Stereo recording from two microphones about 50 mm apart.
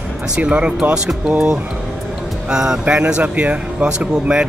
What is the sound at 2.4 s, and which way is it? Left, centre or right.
Speech, centre.